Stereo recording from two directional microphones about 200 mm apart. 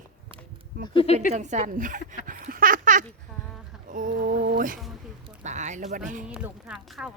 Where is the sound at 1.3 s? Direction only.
35° right (ahead or behind).